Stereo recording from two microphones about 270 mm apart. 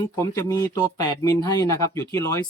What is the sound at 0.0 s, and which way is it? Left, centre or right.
Speech, centre.